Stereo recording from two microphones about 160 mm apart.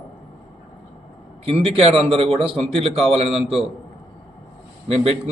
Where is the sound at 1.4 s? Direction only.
35° right (ahead or behind).